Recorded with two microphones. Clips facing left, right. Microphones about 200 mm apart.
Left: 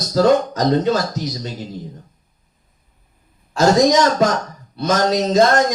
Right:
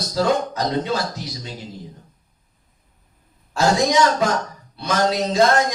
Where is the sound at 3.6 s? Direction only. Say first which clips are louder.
Left 4 dB; 40° left (ahead or behind).